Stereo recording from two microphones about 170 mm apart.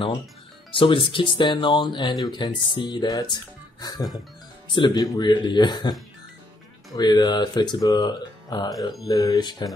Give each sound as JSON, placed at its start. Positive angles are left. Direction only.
{"t": 0.7, "sound": "speech", "side_deg": 30}
{"t": 4.7, "sound": "speech", "side_deg": 25}
{"t": 7.0, "sound": "speech", "side_deg": 25}